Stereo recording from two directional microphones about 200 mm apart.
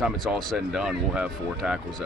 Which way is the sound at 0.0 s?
Centre (ahead or behind).